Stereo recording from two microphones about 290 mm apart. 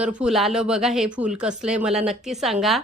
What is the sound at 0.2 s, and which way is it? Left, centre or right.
A woman's voice, centre.